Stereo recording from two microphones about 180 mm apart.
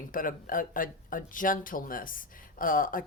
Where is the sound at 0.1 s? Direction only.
50° left (ahead or behind).